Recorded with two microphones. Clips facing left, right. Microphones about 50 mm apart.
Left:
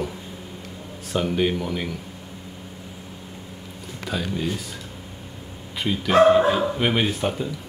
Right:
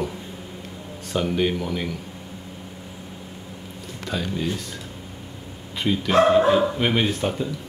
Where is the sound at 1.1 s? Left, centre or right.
Centre.